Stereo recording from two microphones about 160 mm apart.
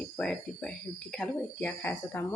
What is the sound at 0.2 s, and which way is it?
A woman's voice, 5° left (ahead or behind).